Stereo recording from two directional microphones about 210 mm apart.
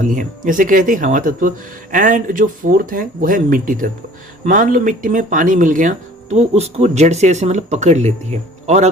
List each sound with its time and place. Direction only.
0.0 s speech: 40° right (ahead or behind)